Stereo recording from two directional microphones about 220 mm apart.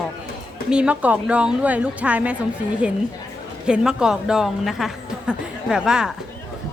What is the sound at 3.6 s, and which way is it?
A woman's voice, 5° right (ahead or behind).